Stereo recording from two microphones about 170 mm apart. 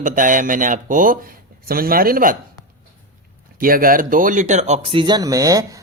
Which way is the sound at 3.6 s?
55° right (ahead or behind).